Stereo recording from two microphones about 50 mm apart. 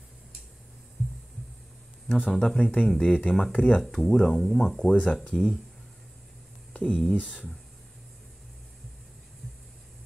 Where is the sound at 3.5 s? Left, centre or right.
Left.